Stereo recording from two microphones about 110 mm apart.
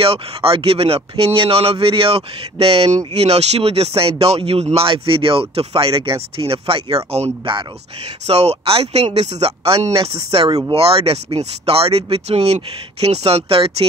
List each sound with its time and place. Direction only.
0.0 s speech: 60° right (ahead or behind)
8.3 s speech: 70° right (ahead or behind)